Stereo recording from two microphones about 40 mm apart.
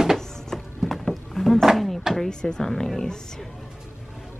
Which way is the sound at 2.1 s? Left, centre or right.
Centre.